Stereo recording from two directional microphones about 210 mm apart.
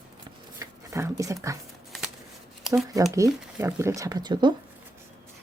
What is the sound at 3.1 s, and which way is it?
Speech, 15° right (ahead or behind).